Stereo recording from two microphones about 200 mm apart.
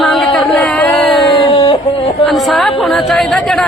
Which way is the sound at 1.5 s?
25° left (ahead or behind).